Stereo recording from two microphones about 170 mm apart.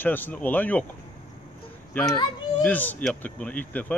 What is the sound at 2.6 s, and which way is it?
Speech, 10° left (ahead or behind).